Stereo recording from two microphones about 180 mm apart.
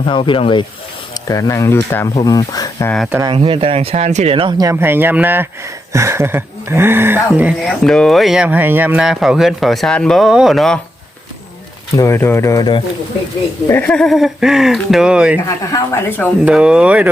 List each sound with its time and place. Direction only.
0.0 s speech: 30° left (ahead or behind)
1.3 s speech: 20° left (ahead or behind)
3.1 s speech: 15° right (ahead or behind)
3.3 s speech: 30° right (ahead or behind)
4.6 s speech: 15° right (ahead or behind)
7.6 s speech: centre (ahead or behind)
11.9 s speech: 15° left (ahead or behind)
13.7 s speech: 10° left (ahead or behind); by 15.4 s 5° right (ahead or behind)
15.4 s speech: 15° left (ahead or behind)
16.5 s speech: 5° right (ahead or behind)